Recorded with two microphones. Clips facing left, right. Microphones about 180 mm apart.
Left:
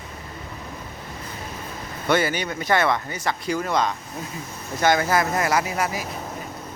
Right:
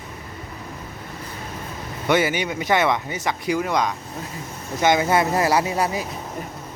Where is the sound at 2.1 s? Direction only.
15° right (ahead or behind).